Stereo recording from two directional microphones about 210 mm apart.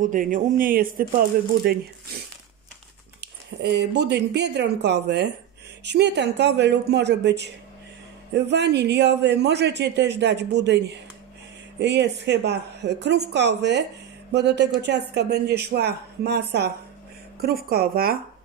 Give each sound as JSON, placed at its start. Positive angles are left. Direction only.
{"t": 0.0, "sound": "speech", "side_deg": -40}
{"t": 3.2, "sound": "a man's voice", "side_deg": -55}